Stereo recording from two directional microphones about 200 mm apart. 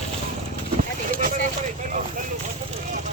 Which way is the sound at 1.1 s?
45° right (ahead or behind).